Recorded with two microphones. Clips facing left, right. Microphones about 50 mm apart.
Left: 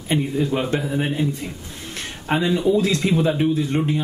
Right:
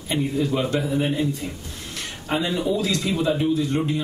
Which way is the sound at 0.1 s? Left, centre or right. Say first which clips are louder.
Left 2 dB; left.